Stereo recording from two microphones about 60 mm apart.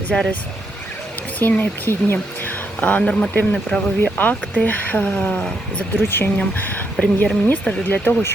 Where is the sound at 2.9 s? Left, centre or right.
Centre.